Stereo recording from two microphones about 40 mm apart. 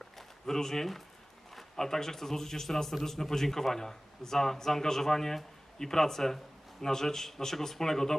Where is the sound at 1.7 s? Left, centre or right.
Centre.